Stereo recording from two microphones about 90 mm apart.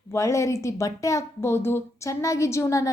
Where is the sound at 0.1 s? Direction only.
35° left (ahead or behind).